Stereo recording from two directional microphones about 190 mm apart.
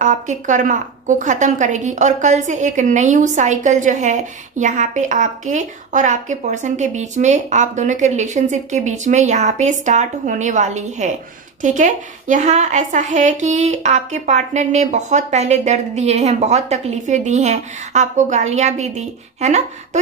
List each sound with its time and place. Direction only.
0.0 s a woman's voice: 40° right (ahead or behind)